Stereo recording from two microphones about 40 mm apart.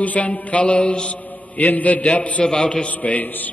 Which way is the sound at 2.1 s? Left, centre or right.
Left.